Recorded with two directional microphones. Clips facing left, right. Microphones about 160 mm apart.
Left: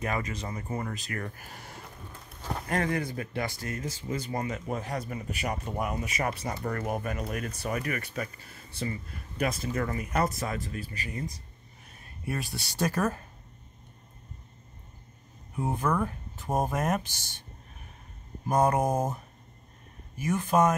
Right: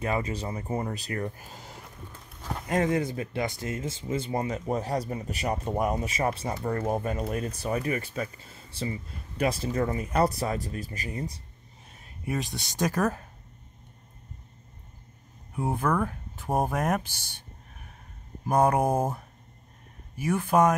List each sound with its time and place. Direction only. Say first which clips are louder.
0.1 s speech: right 3 dB; 30° right (ahead or behind)
1.2 s speech: right 5 dB; 20° right (ahead or behind)
12.3 s speech: right 3 dB; 20° right (ahead or behind)
15.8 s speech: right 1 dB; 5° left (ahead or behind)
16.4 s speech: right 2 dB; 10° right (ahead or behind)
18.5 s speech: right 2 dB; 10° right (ahead or behind)
20.2 s speech: right 2 dB; 10° right (ahead or behind)